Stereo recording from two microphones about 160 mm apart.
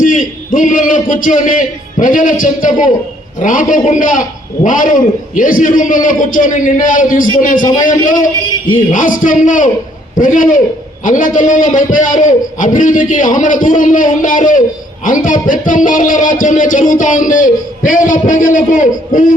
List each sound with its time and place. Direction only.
0.0 s a man's voice: 55° left (ahead or behind)